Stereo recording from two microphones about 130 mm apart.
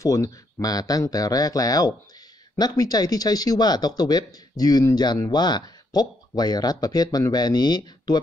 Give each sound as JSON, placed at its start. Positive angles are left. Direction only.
{"t": 0.0, "sound": "speech", "side_deg": 25}